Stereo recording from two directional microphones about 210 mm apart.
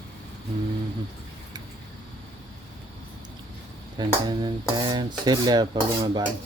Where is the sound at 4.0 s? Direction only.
20° right (ahead or behind).